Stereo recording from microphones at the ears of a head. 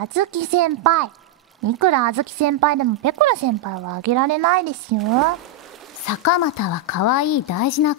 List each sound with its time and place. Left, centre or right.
0.0 s speech: right
6.0 s a woman's voice: left